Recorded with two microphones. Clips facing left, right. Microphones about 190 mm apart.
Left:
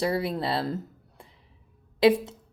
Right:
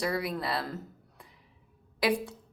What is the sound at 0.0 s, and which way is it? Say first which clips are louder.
Speech: left 4 dB; 30° left (ahead or behind).